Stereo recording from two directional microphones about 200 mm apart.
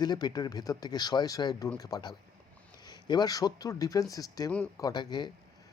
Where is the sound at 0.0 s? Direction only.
20° left (ahead or behind).